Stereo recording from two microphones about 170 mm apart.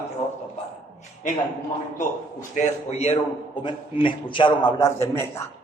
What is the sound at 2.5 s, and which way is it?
A man's voice, 40° left (ahead or behind).